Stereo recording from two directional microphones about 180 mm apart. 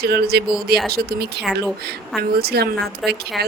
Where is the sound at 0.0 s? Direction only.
60° right (ahead or behind).